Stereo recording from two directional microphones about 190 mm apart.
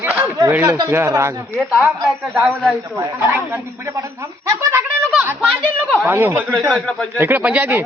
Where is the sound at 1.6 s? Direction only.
5° right (ahead or behind).